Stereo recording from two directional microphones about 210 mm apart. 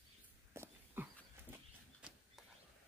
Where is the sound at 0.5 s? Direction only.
10° right (ahead or behind).